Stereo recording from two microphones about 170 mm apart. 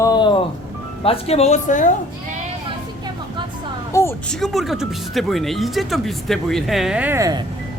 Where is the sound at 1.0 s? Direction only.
35° left (ahead or behind).